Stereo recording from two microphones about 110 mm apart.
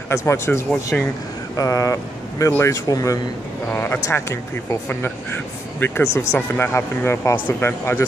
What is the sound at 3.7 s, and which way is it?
Speech, 20° left (ahead or behind).